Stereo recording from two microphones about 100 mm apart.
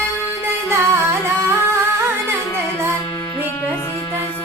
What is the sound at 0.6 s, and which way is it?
Music, 25° right (ahead or behind).